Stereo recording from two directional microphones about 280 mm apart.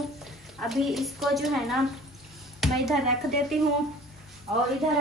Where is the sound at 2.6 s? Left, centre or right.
Centre.